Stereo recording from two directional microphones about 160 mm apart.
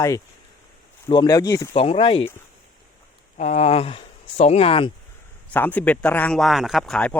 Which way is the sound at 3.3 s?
45° left (ahead or behind).